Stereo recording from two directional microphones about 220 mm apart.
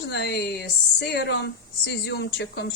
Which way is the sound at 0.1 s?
50° left (ahead or behind).